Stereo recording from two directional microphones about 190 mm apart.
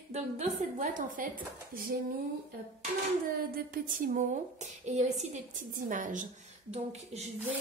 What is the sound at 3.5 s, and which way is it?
A woman's voice, 45° right (ahead or behind).